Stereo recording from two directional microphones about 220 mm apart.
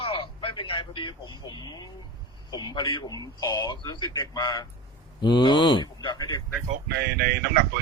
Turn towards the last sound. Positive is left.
turn(degrees=-45)  # may be behind; listen again after turning